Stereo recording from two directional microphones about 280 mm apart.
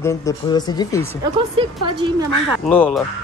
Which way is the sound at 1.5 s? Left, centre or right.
Centre.